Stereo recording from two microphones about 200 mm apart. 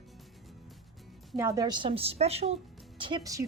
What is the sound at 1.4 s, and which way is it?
Speech, 15° right (ahead or behind).